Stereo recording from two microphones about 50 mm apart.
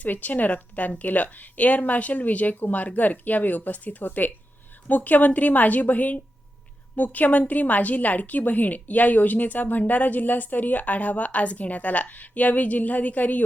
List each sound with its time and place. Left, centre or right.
0.0 s a woman's voice: left